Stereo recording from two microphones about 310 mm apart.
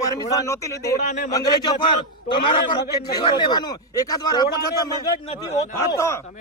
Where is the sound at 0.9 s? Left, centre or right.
Left.